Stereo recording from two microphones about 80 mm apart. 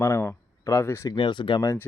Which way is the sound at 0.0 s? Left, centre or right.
Left.